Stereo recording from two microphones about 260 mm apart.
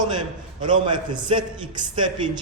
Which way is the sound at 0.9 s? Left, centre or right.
Centre.